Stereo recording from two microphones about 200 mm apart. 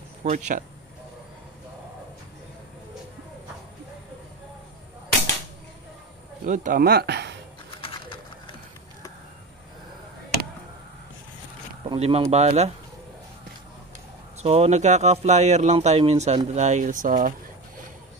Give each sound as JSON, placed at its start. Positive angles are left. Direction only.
{"t": 0.2, "sound": "speech", "side_deg": -35}
{"t": 6.4, "sound": "speech", "side_deg": -40}
{"t": 7.8, "sound": "bird", "side_deg": 25}
{"t": 11.8, "sound": "speech", "side_deg": -30}
{"t": 14.4, "sound": "speech", "side_deg": -30}